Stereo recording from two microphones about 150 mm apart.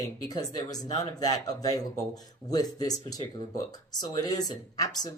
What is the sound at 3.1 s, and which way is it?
Speech, 25° left (ahead or behind).